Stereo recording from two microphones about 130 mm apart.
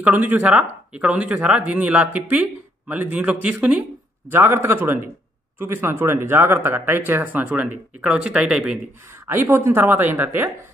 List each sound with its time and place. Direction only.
0.0 s speech: 15° right (ahead or behind)
9.3 s speech: 20° right (ahead or behind)